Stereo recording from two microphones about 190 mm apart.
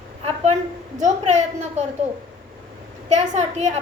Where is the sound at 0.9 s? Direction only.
40° right (ahead or behind).